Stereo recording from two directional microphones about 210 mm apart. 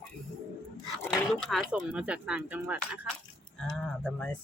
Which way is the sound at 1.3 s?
Centre (ahead or behind).